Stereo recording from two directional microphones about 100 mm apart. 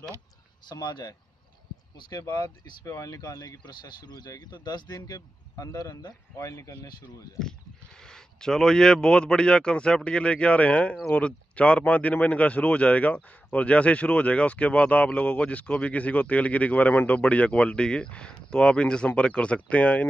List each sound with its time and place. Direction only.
0.7 s speech: 45° left (ahead or behind)
6.9 s speech: 45° left (ahead or behind)
7.3 s speech: 5° left (ahead or behind)